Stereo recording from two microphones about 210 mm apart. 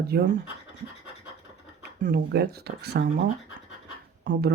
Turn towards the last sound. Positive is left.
turn(degrees=-55)  # may be behind; listen again after turning